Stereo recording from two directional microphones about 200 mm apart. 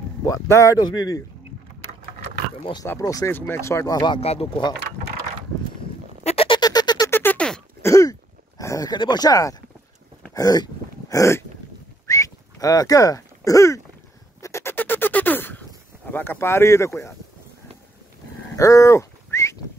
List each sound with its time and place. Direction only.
0.2 s speech: 15° left (ahead or behind)
2.6 s speech: 20° left (ahead or behind)
6.2 s a sound: 30° left (ahead or behind); by 7.9 s 5° left (ahead or behind)
7.9 s throat clearing: 15° left (ahead or behind)
12.1 s a sound: 15° left (ahead or behind)
16.1 s speech: 10° left (ahead or behind)
18.6 s dog: 15° left (ahead or behind)